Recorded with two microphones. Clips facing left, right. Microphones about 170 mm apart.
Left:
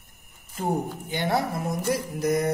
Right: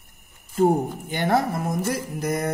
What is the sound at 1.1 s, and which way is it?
Speech, 50° right (ahead or behind).